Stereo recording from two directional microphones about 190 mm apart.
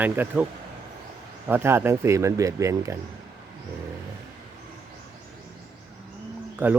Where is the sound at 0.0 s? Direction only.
10° right (ahead or behind).